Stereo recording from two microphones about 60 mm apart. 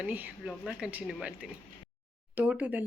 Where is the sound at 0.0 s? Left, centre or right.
Right.